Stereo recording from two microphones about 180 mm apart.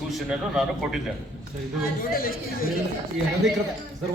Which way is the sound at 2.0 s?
55° left (ahead or behind).